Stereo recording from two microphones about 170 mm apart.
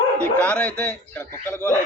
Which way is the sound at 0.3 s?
10° left (ahead or behind).